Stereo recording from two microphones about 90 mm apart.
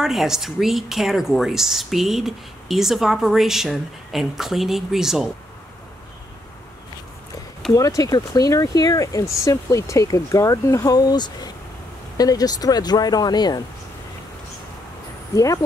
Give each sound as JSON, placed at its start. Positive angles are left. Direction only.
{"t": 0.0, "sound": "speech", "side_deg": -5}
{"t": 7.7, "sound": "speech", "side_deg": 40}
{"t": 15.3, "sound": "speech", "side_deg": 40}